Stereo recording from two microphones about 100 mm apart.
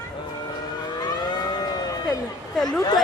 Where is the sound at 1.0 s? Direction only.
45° left (ahead or behind).